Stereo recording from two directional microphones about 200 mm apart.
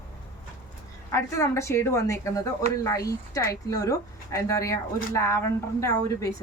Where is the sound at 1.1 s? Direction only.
15° left (ahead or behind).